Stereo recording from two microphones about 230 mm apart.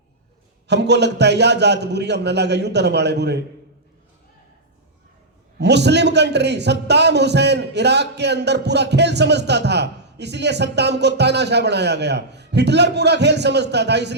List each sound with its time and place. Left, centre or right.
0.7 s a man's voice: right
5.5 s a man's voice: right